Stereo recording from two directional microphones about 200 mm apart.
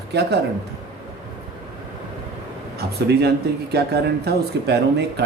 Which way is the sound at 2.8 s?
55° right (ahead or behind).